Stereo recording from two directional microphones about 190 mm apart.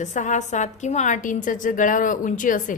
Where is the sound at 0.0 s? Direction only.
40° left (ahead or behind).